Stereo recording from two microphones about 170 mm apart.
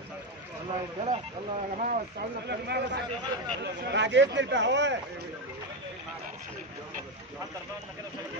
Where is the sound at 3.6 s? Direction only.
90° right.